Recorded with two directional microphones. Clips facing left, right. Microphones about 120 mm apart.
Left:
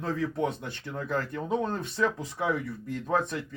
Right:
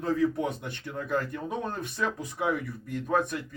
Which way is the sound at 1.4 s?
20° left (ahead or behind).